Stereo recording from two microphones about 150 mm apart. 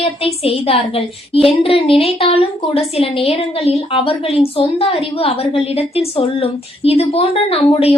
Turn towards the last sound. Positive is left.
turn(degrees=40)  # may be behind; listen again after turning